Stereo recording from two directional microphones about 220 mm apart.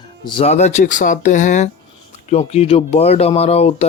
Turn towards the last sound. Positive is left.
turn(degrees=30)  # may be behind; listen again after turning